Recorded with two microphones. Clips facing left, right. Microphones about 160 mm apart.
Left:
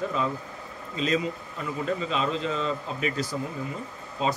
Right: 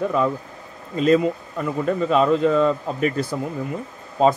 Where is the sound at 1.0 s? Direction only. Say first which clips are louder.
Right 10 dB; 55° right (ahead or behind).